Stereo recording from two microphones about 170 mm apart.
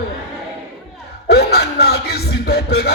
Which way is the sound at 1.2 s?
70° left (ahead or behind).